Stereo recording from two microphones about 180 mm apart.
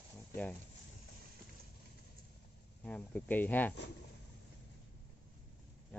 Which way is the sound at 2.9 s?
10° left (ahead or behind).